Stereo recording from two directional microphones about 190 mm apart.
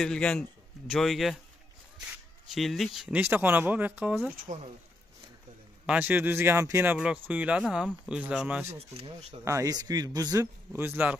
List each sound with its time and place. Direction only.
0.0 s speech: 5° left (ahead or behind)
2.5 s speech: centre (ahead or behind)
5.9 s speech: 10° right (ahead or behind)
8.7 s speech: 30° right (ahead or behind)
9.4 s speech: 15° right (ahead or behind)